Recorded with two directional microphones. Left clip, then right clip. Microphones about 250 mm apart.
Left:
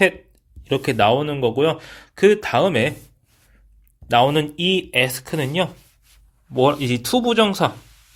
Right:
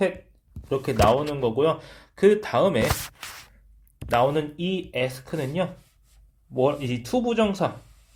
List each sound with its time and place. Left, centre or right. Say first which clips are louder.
0.7 s a man's voice: left 4 dB; left
2.1 s a man's voice: left 4 dB; left
4.1 s a man's voice: left 5 dB; left